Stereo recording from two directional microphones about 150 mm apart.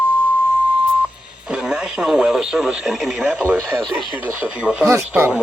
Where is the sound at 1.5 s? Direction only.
5° right (ahead or behind).